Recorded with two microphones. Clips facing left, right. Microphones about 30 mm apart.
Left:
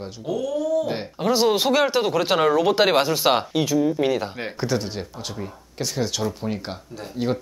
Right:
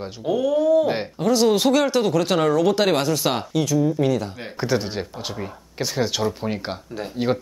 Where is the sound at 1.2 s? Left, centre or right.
Centre.